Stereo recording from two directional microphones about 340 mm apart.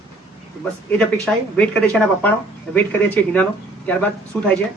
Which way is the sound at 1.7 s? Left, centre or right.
Centre.